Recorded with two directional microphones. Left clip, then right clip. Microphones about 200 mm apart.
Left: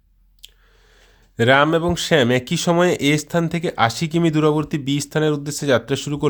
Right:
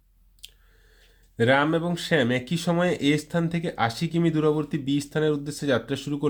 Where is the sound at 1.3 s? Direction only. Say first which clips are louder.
Left 6 dB; 30° left (ahead or behind).